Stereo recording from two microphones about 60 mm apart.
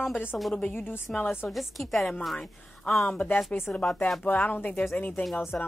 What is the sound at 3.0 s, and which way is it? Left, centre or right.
Speech, left.